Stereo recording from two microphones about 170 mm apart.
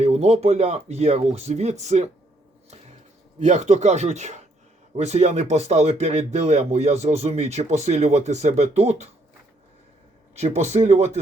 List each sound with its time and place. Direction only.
0.0 s speech: 40° right (ahead or behind)
3.4 s speech: 45° right (ahead or behind)
10.3 s speech: 40° right (ahead or behind)